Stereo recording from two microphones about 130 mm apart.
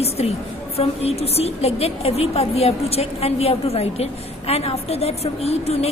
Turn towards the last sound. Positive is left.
turn(degrees=55)  # may be behind; listen again after turning